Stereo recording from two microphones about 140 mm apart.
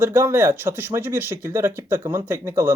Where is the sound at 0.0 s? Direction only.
15° right (ahead or behind).